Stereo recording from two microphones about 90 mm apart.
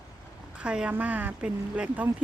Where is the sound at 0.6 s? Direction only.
10° right (ahead or behind).